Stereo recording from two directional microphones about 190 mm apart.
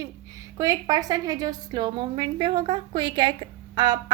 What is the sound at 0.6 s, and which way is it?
A woman's voice, 20° right (ahead or behind).